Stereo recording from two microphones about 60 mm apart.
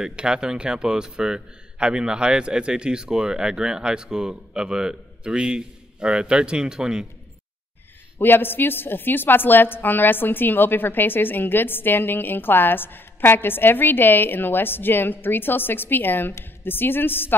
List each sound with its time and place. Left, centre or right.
0.0 s a man's voice: centre
8.2 s a woman's voice: left